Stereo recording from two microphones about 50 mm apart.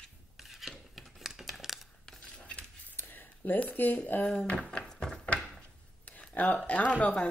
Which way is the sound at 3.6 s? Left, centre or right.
Left.